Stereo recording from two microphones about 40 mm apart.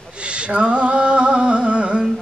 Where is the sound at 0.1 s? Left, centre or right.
Right.